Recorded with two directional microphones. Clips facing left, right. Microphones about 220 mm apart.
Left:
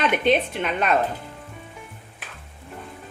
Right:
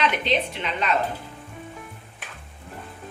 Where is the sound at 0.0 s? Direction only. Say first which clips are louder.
Left 4 dB; 50° left (ahead or behind).